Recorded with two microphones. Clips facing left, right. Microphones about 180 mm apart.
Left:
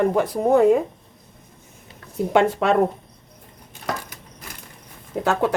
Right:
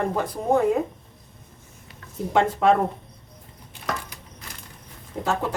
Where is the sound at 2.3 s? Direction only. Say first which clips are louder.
Left 1 dB; 75° left (ahead or behind).